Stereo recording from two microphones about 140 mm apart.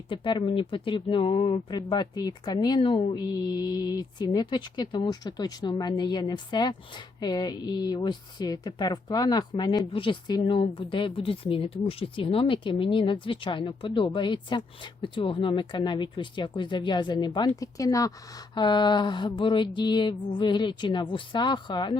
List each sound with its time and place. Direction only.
0.1 s speech: 35° left (ahead or behind)